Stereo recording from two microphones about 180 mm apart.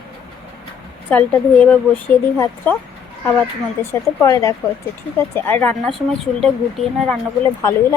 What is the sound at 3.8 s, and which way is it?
Speech, 15° left (ahead or behind).